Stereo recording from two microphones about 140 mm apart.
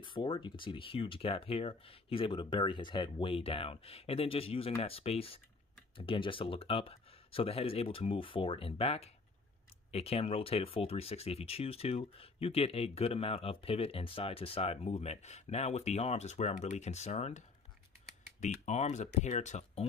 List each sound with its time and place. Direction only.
0.0 s speech: 35° left (ahead or behind); by 19.9 s 50° left (ahead or behind)